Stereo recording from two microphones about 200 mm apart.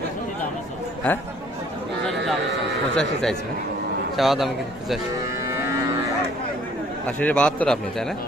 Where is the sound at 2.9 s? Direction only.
5° left (ahead or behind).